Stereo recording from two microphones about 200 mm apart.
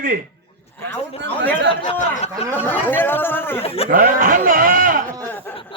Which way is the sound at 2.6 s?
10° left (ahead or behind).